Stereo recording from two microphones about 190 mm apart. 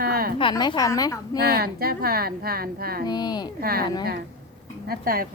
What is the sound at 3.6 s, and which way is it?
Speech, 50° right (ahead or behind).